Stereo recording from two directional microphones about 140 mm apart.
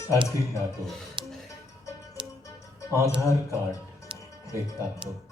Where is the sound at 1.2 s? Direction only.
35° right (ahead or behind).